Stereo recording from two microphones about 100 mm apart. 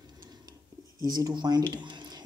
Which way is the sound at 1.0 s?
40° right (ahead or behind).